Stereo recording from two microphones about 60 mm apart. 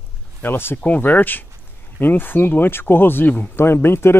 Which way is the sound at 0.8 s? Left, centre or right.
Left.